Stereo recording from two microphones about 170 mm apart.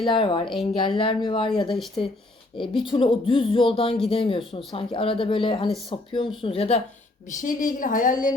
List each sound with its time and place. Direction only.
0.0 s speech: 30° left (ahead or behind)
7.4 s a woman's voice: 50° left (ahead or behind)